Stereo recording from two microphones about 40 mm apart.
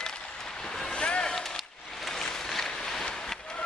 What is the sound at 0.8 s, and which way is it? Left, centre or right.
Boat, left.